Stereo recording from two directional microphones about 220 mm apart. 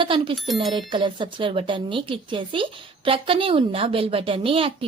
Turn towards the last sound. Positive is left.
turn(degrees=-25)  # may be behind; listen again after turning